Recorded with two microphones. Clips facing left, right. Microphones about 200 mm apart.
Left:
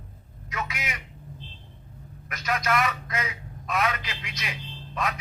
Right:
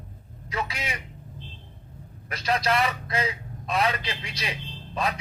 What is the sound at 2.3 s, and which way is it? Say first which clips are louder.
A man's voice: right 2 dB; 30° right (ahead or behind).